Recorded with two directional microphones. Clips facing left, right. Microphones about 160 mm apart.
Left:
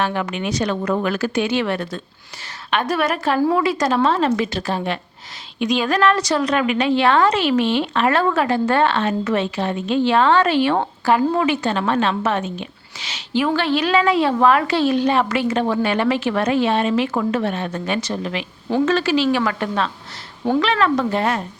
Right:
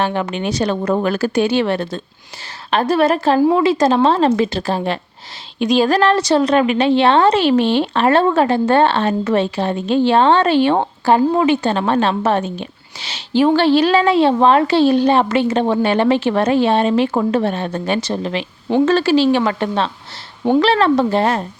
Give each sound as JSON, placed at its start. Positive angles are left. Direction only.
{"t": 0.0, "sound": "speech", "side_deg": -30}